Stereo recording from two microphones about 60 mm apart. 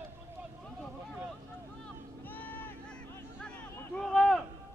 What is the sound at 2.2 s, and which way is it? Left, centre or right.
Vehicle, left.